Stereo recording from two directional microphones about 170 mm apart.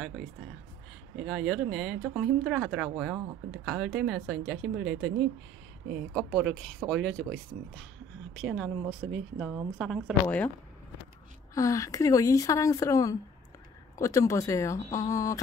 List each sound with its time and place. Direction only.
1.1 s speech: 5° right (ahead or behind)
6.1 s speech: centre (ahead or behind)
11.5 s speech: 20° left (ahead or behind)